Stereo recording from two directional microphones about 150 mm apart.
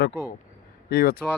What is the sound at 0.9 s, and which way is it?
Speech, 90° left.